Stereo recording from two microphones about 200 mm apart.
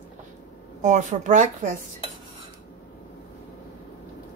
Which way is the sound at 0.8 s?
40° right (ahead or behind).